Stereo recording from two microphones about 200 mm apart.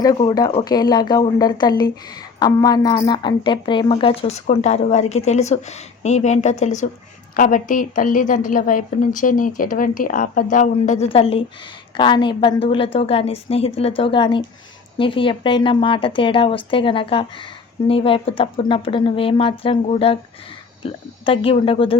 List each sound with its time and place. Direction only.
0.0 s a woman's voice: 20° left (ahead or behind)